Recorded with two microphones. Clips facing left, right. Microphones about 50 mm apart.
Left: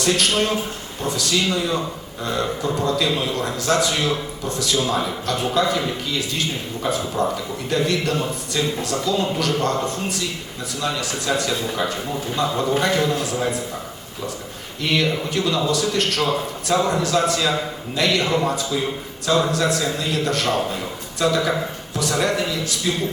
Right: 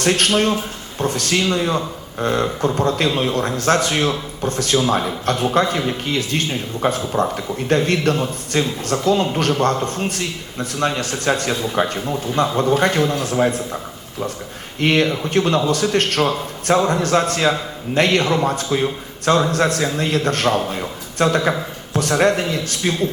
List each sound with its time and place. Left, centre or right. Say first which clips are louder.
0.0 s a man's voice: right 3 dB; right
13.0 s a man's voice: right 2 dB; right
13.3 s a man's voice: right 5 dB; right
14.8 s speech: right 4 dB; right